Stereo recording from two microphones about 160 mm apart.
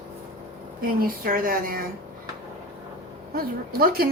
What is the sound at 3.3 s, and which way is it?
Speech, 70° right (ahead or behind).